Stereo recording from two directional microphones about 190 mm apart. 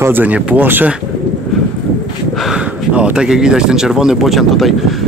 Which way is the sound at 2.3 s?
Centre (ahead or behind).